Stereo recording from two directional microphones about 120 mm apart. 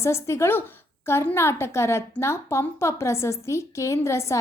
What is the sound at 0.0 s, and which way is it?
A woman's voice, 25° left (ahead or behind).